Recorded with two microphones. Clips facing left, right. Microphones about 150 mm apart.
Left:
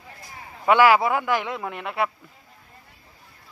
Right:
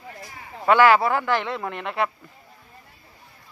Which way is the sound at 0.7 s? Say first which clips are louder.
Even; 10° left (ahead or behind).